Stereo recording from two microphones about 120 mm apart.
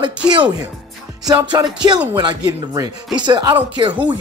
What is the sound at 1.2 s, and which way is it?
Speech, 35° right (ahead or behind).